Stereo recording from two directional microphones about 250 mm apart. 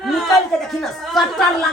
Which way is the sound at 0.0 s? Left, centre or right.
Centre.